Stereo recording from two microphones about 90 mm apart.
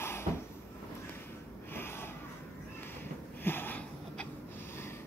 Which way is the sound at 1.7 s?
25° left (ahead or behind).